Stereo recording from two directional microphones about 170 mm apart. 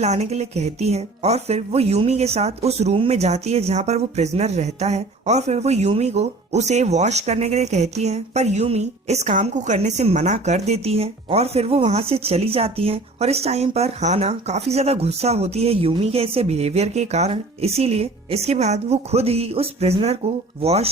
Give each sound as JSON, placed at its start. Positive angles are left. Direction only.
{"t": 0.0, "sound": "speech", "side_deg": -40}